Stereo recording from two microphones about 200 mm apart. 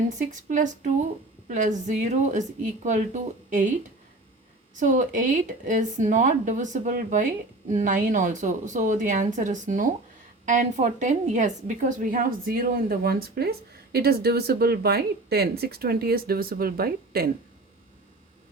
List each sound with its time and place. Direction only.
0.4 s speech: 40° right (ahead or behind)
4.8 s a woman's voice: 40° right (ahead or behind)